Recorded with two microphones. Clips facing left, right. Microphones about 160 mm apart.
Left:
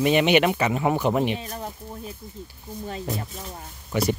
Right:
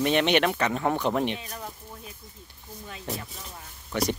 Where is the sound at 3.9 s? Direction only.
5° left (ahead or behind).